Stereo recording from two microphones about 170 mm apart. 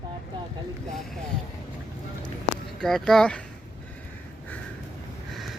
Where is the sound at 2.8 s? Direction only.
Centre (ahead or behind).